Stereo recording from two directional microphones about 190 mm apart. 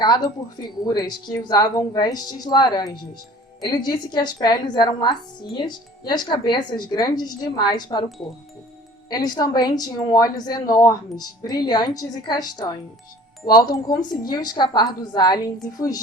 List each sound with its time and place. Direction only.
0.6 s speech: 20° left (ahead or behind)